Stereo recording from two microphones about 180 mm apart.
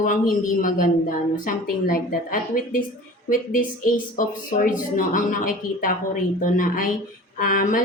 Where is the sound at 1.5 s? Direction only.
50° left (ahead or behind).